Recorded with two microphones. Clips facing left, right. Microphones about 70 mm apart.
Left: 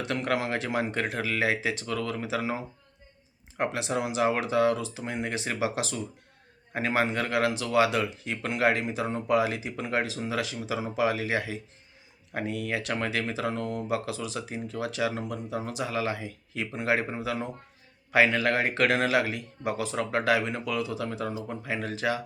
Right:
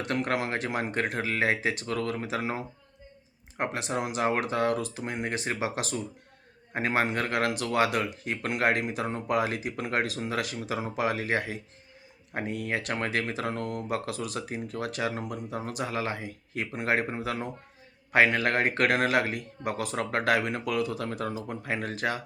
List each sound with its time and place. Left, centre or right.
0.1 s speech: right